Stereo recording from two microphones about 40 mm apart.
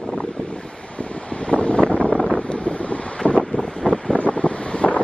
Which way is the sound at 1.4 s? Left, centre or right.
Left.